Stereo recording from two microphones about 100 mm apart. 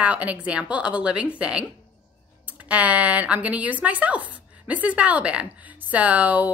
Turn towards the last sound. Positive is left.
turn(degrees=-15)  # may be behind; listen again after turning